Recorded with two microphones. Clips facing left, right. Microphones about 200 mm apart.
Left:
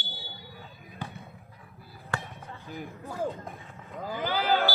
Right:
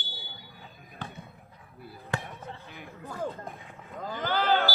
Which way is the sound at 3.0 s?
15° left (ahead or behind).